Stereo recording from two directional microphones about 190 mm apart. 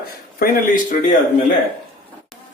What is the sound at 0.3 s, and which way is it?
Speech, 50° left (ahead or behind).